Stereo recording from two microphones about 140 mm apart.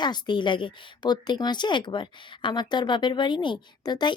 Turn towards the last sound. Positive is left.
turn(degrees=30)  # may be behind; listen again after turning